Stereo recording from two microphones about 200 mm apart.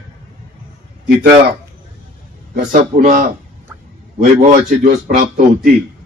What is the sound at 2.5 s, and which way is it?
A man's voice, 40° right (ahead or behind).